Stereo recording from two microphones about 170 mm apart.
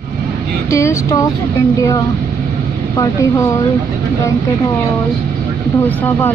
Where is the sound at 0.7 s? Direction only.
15° left (ahead or behind).